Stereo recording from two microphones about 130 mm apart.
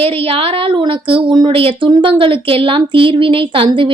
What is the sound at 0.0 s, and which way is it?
A woman's voice, 45° right (ahead or behind).